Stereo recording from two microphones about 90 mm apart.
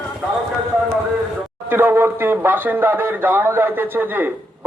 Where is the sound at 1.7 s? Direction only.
25° right (ahead or behind).